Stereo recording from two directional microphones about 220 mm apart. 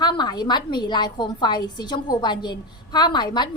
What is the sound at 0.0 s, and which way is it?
A woman's voice, 20° left (ahead or behind).